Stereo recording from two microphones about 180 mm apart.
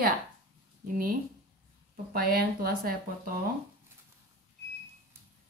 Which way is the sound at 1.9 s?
55° right (ahead or behind).